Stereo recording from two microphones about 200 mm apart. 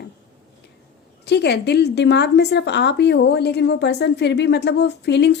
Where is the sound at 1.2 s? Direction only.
55° left (ahead or behind).